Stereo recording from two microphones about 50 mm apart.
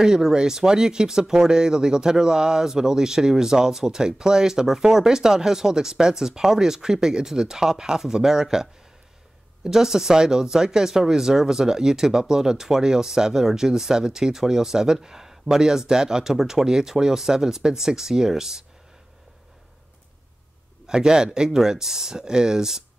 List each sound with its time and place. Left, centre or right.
0.0 s speech: centre
20.8 s speech: centre